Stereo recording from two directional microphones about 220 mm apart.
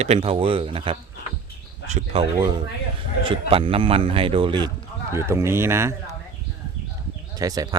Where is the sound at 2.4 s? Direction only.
20° right (ahead or behind).